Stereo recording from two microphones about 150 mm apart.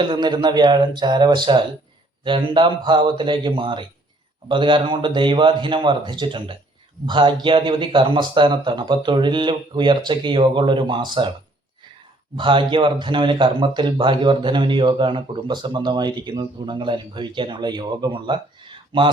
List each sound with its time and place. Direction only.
0.0 s a man's voice: 30° right (ahead or behind)
12.4 s a man's voice: 30° right (ahead or behind)